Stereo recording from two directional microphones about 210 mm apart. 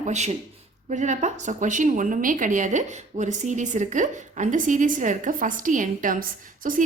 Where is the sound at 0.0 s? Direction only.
30° right (ahead or behind).